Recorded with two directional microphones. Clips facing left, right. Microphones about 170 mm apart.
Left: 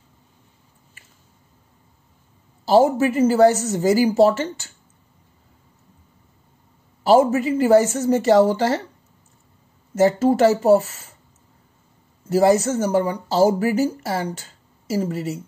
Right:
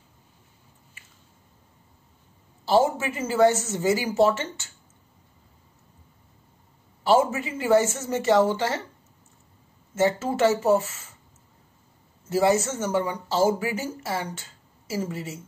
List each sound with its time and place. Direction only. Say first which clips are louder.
2.6 s speech: left 6 dB; 40° left (ahead or behind)
7.0 s speech: left 6 dB; 40° left (ahead or behind)
9.9 s speech: left 7 dB; 35° left (ahead or behind)
12.3 s speech: left 5 dB; 40° left (ahead or behind)